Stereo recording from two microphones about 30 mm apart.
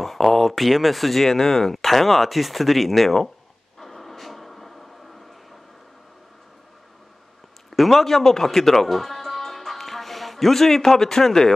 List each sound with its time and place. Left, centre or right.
0.0 s speech: centre
3.8 s a sound: centre
7.7 s speech: centre